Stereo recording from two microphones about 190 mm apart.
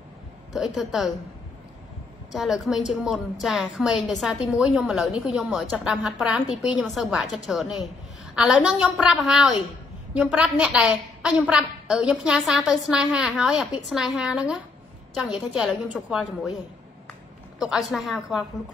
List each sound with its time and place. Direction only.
0.5 s a woman's voice: centre (ahead or behind)
2.3 s a woman's voice: centre (ahead or behind)
17.6 s a woman's voice: centre (ahead or behind)